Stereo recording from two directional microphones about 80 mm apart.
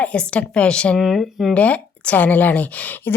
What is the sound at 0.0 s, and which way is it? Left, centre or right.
Speech, centre.